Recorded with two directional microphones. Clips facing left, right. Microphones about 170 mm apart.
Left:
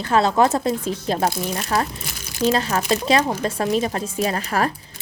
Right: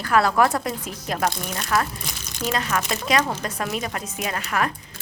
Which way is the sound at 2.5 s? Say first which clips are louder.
Left 3 dB; 30° left (ahead or behind).